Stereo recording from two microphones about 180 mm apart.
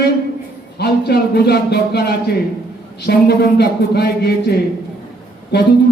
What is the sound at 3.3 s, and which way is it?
Speech, 65° left (ahead or behind).